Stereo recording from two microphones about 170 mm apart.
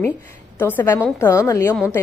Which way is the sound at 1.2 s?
15° left (ahead or behind).